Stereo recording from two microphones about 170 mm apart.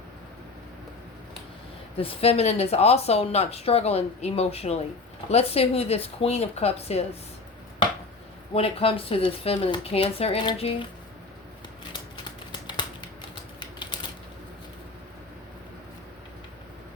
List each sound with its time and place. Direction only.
2.0 s speech: 35° left (ahead or behind)
8.5 s speech: 35° left (ahead or behind)
11.9 s a sound: 25° left (ahead or behind)
13.6 s typing: 25° left (ahead or behind)